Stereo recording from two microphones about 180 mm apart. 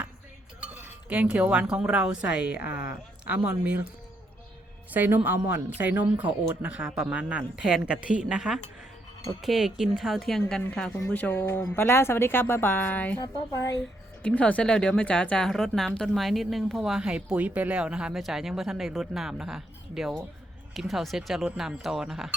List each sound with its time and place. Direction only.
0.6 s speech: 10° right (ahead or behind)
4.9 s speech: 10° right (ahead or behind); by 13.1 s 10° left (ahead or behind)
13.1 s a woman's voice: 25° left (ahead or behind)
14.2 s speech: 5° left (ahead or behind)